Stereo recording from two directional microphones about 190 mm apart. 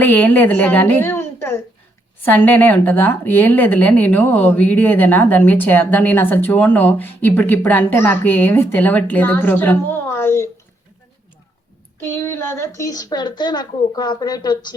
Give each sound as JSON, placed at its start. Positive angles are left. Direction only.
{"t": 0.0, "sound": "speech", "side_deg": 10}
{"t": 11.9, "sound": "a woman's voice", "side_deg": 10}